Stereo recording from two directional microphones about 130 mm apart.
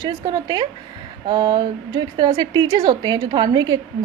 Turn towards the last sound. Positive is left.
turn(degrees=-35)  # may be behind; listen again after turning